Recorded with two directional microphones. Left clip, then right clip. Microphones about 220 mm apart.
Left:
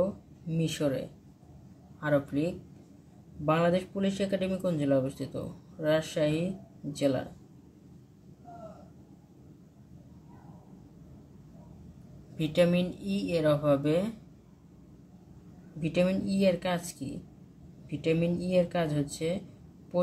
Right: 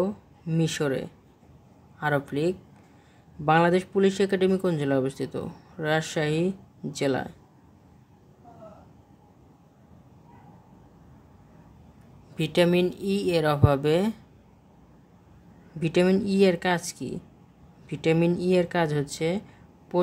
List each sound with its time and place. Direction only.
0.5 s speech: 55° right (ahead or behind)
12.4 s speech: 45° right (ahead or behind)
15.8 s speech: 55° right (ahead or behind)